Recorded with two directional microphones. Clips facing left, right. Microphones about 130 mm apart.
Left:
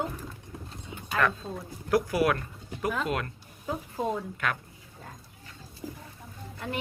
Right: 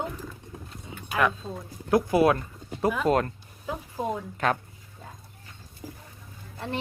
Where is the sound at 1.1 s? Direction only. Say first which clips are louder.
Right 2 dB; 10° right (ahead or behind).